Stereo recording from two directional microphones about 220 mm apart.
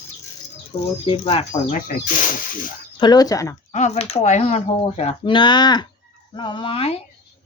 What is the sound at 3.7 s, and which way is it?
Speech, 30° left (ahead or behind).